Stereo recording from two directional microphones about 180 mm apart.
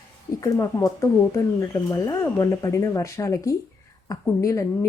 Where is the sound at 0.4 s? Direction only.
20° left (ahead or behind).